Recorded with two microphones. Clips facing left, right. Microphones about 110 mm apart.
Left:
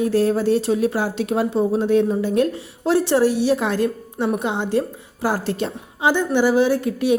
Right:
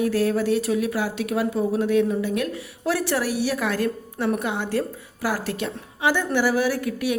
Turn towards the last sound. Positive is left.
turn(degrees=25)  # may be behind; listen again after turning